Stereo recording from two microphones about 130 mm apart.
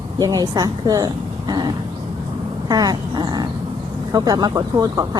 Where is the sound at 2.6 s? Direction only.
30° right (ahead or behind).